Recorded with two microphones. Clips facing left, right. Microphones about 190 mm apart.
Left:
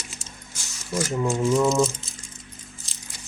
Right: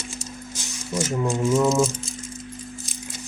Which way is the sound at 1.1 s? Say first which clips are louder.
Even; centre (ahead or behind).